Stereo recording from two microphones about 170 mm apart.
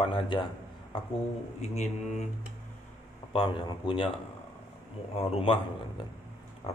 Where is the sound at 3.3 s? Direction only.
30° left (ahead or behind).